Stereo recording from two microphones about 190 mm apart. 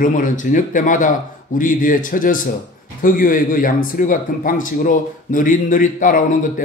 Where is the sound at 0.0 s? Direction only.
45° left (ahead or behind).